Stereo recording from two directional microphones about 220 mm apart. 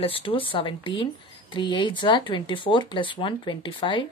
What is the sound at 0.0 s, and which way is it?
Speech, 25° left (ahead or behind).